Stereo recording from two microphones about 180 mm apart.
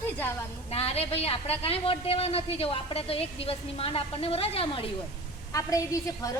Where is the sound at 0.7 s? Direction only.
35° left (ahead or behind).